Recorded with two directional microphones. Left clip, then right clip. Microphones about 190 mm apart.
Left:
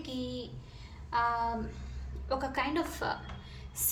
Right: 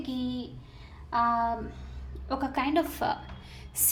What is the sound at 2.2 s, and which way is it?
Speech, 35° right (ahead or behind).